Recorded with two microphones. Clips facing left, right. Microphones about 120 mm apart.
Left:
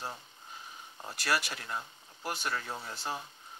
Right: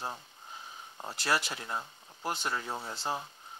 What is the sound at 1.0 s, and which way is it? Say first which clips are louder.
Speech: right 1 dB; 25° right (ahead or behind).